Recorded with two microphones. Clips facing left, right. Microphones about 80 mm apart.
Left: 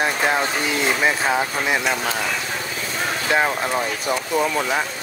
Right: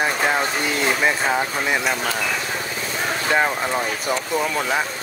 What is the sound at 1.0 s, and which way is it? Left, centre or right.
Speech, centre.